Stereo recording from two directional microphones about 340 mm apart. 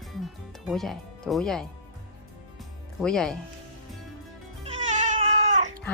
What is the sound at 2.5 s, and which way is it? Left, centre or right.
Music, centre.